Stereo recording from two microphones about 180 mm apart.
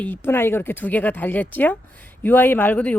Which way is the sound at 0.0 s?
10° left (ahead or behind).